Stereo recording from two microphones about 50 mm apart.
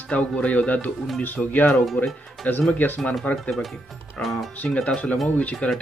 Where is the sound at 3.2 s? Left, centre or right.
Left.